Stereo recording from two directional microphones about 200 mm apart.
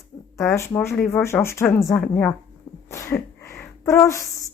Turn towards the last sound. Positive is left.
turn(degrees=15)  # may be behind; listen again after turning